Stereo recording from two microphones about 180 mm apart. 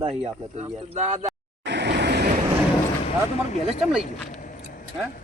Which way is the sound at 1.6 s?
70° right (ahead or behind).